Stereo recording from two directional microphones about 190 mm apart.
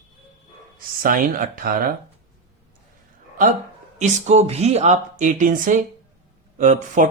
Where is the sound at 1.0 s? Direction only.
45° right (ahead or behind).